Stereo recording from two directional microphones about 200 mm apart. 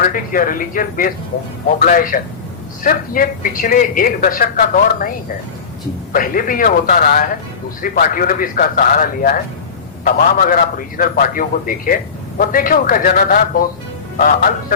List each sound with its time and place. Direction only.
0.0 s speech: 45° left (ahead or behind)
6.1 s speech: 45° left (ahead or behind)